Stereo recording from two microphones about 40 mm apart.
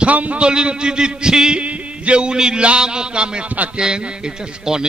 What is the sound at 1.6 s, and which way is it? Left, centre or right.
A man's voice, right.